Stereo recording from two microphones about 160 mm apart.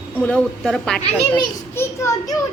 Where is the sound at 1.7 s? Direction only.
15° left (ahead or behind).